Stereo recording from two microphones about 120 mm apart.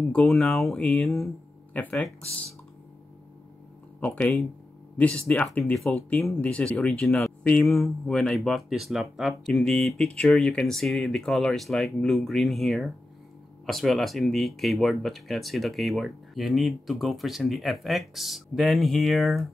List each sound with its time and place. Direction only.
0.1 s speech: 5° left (ahead or behind)
1.7 s speech: 15° left (ahead or behind)
4.0 s speech: 10° left (ahead or behind)